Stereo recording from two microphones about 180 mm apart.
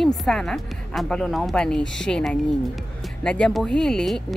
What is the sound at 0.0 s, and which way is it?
Speech, centre (ahead or behind).